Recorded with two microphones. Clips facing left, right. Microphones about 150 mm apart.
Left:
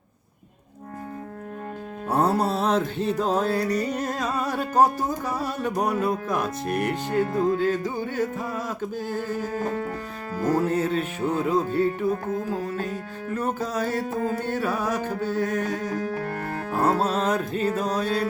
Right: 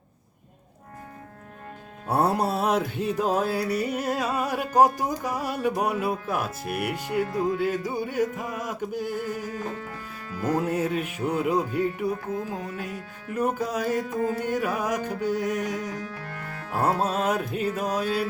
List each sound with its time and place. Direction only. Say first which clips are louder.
2.0 s music: left 1 dB; 10° right (ahead or behind)
9.6 s music: left 6 dB; 50° left (ahead or behind)
10.5 s music: left 2 dB; 15° right (ahead or behind)
14.0 s music: left 1 dB; 35° left (ahead or behind)
14.4 s music: left 1 dB; 15° right (ahead or behind)
15.8 s music: left 6 dB; 40° left (ahead or behind)
17.0 s music: left 1 dB; 10° right (ahead or behind)